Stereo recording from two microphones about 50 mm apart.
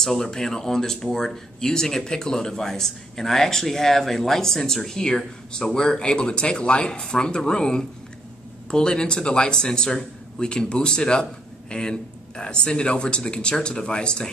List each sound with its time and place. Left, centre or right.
0.0 s speech: centre